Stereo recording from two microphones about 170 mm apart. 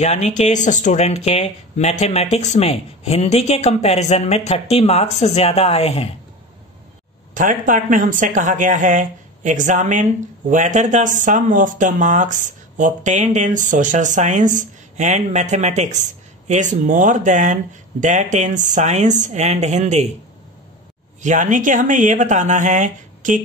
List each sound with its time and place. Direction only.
0.0 s speech: 40° left (ahead or behind)
7.3 s speech: 50° right (ahead or behind)
21.2 s speech: 45° right (ahead or behind)